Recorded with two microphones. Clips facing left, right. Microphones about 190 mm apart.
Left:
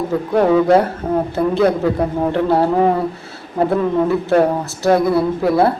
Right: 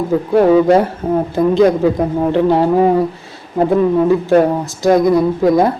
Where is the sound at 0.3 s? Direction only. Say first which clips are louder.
Right 3 dB; 10° right (ahead or behind).